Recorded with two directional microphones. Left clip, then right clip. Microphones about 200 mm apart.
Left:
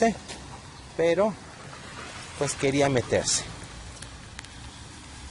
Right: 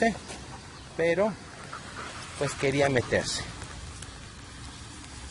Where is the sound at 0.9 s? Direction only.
20° left (ahead or behind).